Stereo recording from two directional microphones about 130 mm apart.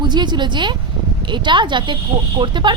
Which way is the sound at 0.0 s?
35° right (ahead or behind).